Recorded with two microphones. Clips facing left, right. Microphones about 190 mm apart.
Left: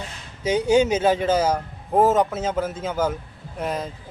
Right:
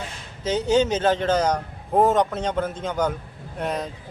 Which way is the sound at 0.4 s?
10° left (ahead or behind).